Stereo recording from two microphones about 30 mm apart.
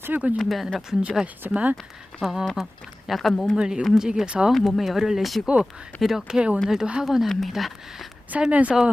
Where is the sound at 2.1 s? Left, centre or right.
Left.